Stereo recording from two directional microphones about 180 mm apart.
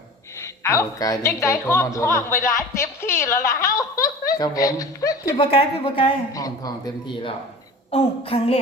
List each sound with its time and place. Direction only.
0.4 s a woman's voice: 15° left (ahead or behind)
5.4 s a woman's voice: 30° left (ahead or behind)